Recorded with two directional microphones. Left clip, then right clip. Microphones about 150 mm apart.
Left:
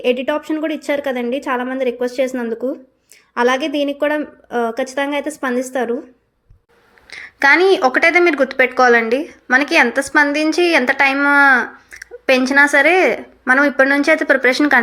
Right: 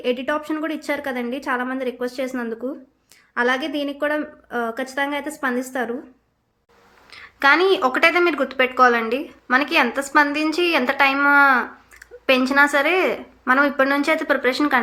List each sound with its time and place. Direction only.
0.0 s a woman's voice: 15° left (ahead or behind)
7.1 s speech: 30° left (ahead or behind)